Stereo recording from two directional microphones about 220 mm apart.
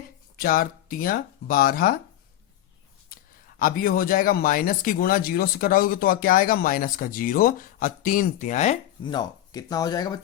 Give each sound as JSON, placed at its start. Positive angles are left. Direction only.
{"t": 0.3, "sound": "speech", "side_deg": 40}
{"t": 3.1, "sound": "speech", "side_deg": 40}